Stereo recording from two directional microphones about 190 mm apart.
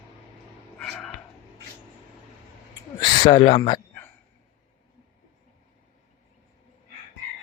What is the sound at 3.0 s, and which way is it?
Speech, 25° left (ahead or behind).